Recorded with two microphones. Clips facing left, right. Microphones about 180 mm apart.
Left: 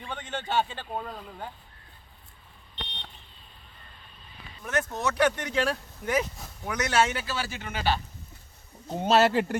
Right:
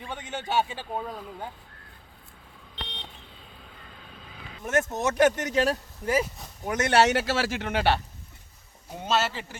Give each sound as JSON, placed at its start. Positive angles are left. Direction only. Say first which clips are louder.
{"t": 0.1, "sound": "a man's voice", "louder": "right 1 dB", "side_deg": -10}
{"t": 4.0, "sound": "vehicle", "louder": "right 4 dB", "side_deg": -90}
{"t": 4.6, "sound": "speech", "louder": "right 3 dB", "side_deg": -45}
{"t": 6.1, "sound": "speech", "louder": "right 1 dB", "side_deg": 0}
{"t": 6.7, "sound": "speech", "louder": "right 4 dB", "side_deg": -50}
{"t": 9.0, "sound": "speech", "louder": "left 6 dB", "side_deg": 55}